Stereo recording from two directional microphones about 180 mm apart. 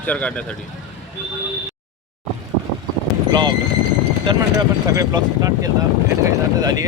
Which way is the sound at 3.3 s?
25° right (ahead or behind).